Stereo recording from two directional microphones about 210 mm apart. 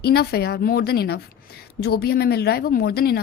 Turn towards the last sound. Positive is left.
turn(degrees=50)  # may be behind; listen again after turning